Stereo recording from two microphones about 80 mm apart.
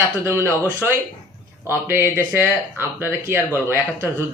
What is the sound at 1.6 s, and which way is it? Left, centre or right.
Speech, right.